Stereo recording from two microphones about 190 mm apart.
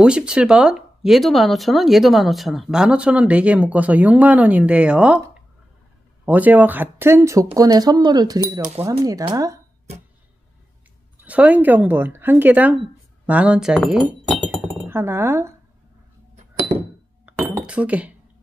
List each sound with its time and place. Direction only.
0.0 s speech: 5° right (ahead or behind)
11.2 s speech: 10° right (ahead or behind)
17.3 s chink: 5° right (ahead or behind)